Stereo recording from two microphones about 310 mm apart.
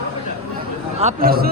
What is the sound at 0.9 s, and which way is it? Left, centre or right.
Speech, right.